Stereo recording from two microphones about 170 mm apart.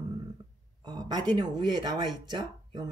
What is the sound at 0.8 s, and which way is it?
Speech, 25° right (ahead or behind).